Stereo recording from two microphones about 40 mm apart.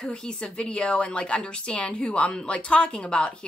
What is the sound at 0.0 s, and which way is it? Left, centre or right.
A woman's voice, centre.